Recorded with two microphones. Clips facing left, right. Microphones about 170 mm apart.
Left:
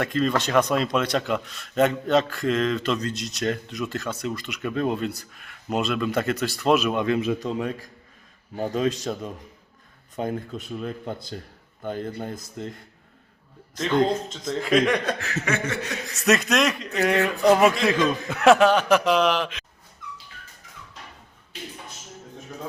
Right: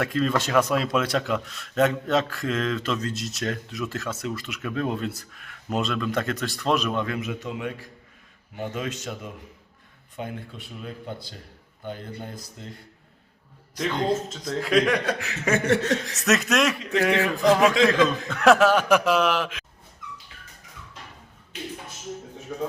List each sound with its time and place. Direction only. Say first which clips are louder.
0.0 s speech: left 1 dB; 5° right (ahead or behind)
7.0 s a man's voice: left 6 dB; 25° left (ahead or behind); by 12.4 s 45° left (ahead or behind)
13.8 s speech: left 3 dB; 5° right (ahead or behind)
15.8 s speech: right 7 dB; 10° left (ahead or behind)
16.1 s speech: left 4 dB; centre (ahead or behind)
17.7 s a man's voice: right 3 dB; 90° right
18.3 s a man's voice: left 2 dB; 5° left (ahead or behind)